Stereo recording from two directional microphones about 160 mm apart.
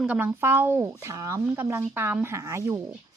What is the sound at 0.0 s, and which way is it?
A woman's voice, 10° right (ahead or behind).